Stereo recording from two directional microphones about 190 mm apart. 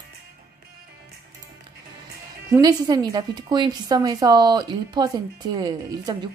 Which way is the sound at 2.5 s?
20° right (ahead or behind).